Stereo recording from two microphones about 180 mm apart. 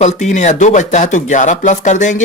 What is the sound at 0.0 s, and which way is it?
Speech, 40° left (ahead or behind).